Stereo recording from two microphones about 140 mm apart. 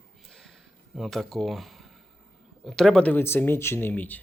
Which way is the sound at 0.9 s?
Centre (ahead or behind).